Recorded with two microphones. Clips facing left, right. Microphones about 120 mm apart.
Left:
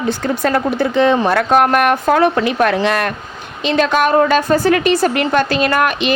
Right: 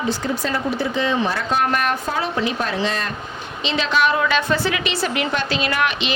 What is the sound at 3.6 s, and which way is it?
A woman's voice, 50° left (ahead or behind).